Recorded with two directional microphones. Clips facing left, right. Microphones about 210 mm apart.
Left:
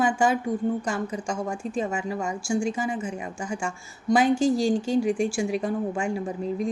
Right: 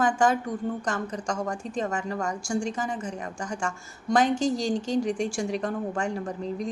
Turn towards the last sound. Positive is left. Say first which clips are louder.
# left 3 dB
turn(degrees=5)  # may be behind; listen again after turning